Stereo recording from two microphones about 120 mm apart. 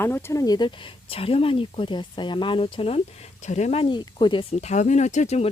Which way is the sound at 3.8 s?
40° left (ahead or behind).